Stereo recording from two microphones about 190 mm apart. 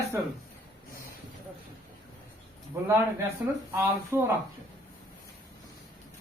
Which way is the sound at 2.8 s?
15° right (ahead or behind).